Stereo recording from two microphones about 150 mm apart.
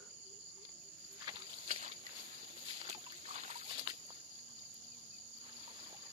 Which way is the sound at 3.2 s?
50° right (ahead or behind).